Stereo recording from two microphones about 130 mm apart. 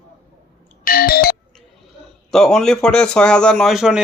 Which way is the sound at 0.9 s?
90° left.